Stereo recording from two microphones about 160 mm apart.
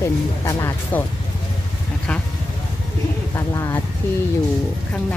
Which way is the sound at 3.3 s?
15° left (ahead or behind).